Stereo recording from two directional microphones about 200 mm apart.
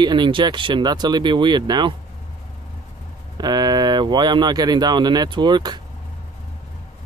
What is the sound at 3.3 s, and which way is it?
Speech, 20° right (ahead or behind).